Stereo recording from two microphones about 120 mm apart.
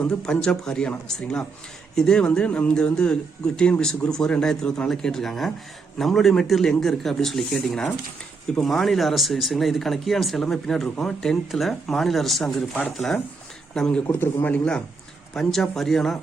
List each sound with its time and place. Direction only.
0.0 s speech: 5° left (ahead or behind)
14.1 s speech: 15° left (ahead or behind)